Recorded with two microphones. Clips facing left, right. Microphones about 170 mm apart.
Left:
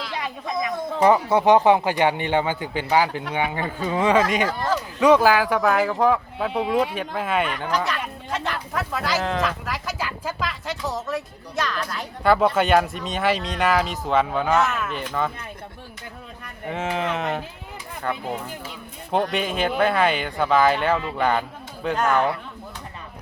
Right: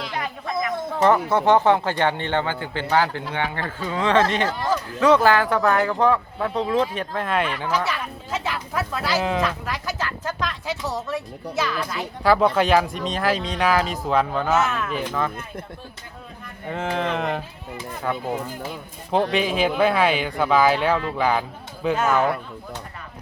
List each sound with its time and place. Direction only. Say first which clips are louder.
0.6 s speech: left 1 dB; 10° left (ahead or behind)
10.0 s speech: right 1 dB; 10° left (ahead or behind)
16.6 s speech: even; 5° left (ahead or behind)
19.1 s speech: right 2 dB; centre (ahead or behind)